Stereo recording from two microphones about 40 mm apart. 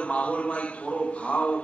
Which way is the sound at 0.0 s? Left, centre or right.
Left.